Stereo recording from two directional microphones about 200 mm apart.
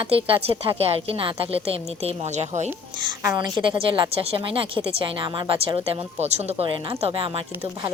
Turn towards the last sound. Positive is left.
turn(degrees=-25)  # may be behind; listen again after turning